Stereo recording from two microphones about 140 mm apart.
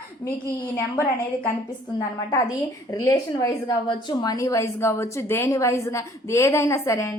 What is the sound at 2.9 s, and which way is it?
A woman's voice, 25° left (ahead or behind).